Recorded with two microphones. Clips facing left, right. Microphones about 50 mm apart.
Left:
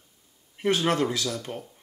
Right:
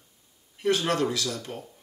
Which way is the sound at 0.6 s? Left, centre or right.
Left.